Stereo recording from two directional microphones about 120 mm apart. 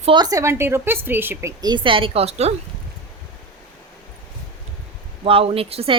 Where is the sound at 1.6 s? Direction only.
40° right (ahead or behind); by 2.5 s 60° right (ahead or behind).